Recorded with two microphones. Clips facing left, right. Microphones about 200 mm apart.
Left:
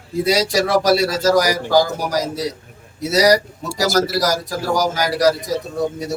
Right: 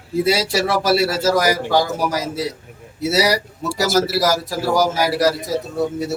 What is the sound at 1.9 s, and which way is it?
A man's voice, 5° right (ahead or behind).